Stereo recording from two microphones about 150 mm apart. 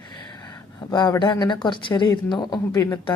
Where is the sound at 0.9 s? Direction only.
25° left (ahead or behind).